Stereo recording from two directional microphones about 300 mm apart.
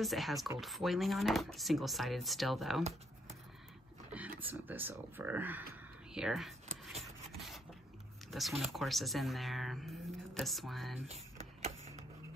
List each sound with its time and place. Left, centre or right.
0.0 s speech: centre
2.8 s a sound: right
4.4 s speech: centre
6.7 s a sound: right
7.3 s rub: centre
8.3 s speech: centre